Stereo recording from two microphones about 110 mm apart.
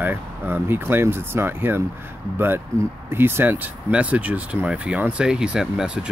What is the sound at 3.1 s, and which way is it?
Speech, 20° right (ahead or behind).